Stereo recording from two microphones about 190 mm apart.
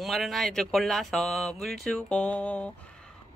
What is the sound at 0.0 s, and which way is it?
Speech, centre (ahead or behind).